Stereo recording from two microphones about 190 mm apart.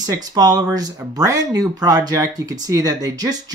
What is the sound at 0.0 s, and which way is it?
Speech, 20° right (ahead or behind).